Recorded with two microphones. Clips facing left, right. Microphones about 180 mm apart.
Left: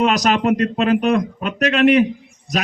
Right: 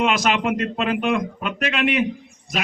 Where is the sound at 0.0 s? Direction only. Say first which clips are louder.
Left 4 dB; 40° left (ahead or behind).